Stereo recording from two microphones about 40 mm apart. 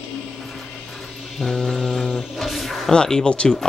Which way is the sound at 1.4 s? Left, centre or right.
Centre.